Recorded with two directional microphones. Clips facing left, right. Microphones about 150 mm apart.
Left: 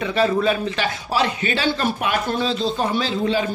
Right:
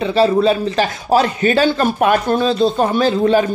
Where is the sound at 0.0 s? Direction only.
30° right (ahead or behind).